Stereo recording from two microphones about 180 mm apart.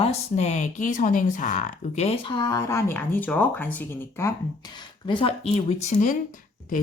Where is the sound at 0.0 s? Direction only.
35° left (ahead or behind).